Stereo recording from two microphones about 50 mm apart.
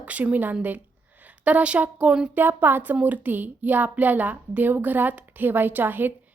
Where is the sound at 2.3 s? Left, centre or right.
Right.